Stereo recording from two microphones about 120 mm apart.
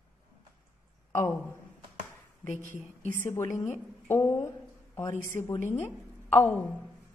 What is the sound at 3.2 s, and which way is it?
A woman's voice, 20° left (ahead or behind).